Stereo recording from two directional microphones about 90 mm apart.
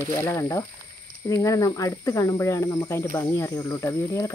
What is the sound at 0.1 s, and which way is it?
Speech, 30° left (ahead or behind).